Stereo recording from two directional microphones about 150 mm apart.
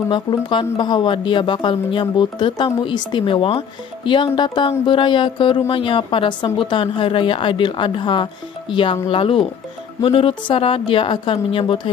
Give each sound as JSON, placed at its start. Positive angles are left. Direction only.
{"t": 0.1, "sound": "speech", "side_deg": 35}